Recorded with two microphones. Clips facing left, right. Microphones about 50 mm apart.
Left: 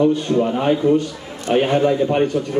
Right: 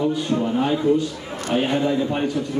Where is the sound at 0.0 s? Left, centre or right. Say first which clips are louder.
Left 5 dB; left.